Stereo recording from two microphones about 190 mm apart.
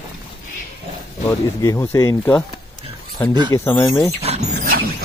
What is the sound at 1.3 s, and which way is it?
Speech, 15° left (ahead or behind).